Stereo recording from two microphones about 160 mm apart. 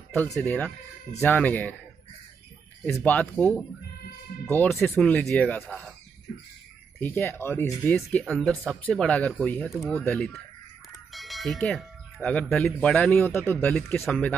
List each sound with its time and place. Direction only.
0.1 s speech: 10° left (ahead or behind)
2.8 s speech: 10° left (ahead or behind)
6.3 s bird: 70° left (ahead or behind)
7.0 s speech: 15° left (ahead or behind)